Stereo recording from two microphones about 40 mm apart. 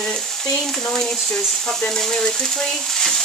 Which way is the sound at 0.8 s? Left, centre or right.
Centre.